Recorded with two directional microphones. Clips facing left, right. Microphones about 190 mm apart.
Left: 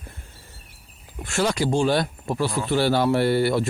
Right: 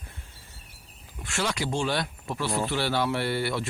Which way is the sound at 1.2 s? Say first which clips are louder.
Left 7 dB; 40° left (ahead or behind).